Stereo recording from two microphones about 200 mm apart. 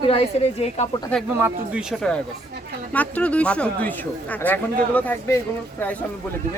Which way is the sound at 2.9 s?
5° left (ahead or behind).